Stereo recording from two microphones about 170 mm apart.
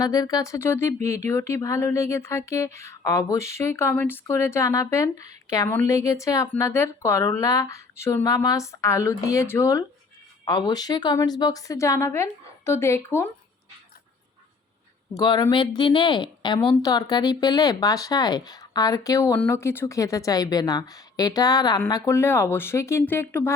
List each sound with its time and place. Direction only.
0.0 s a woman's voice: 20° left (ahead or behind)
15.1 s a woman's voice: 25° left (ahead or behind)